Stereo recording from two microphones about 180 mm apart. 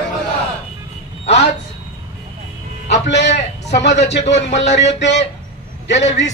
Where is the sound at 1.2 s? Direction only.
35° left (ahead or behind).